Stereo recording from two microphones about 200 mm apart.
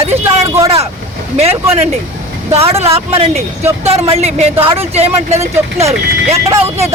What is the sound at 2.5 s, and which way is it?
Speech, 30° right (ahead or behind).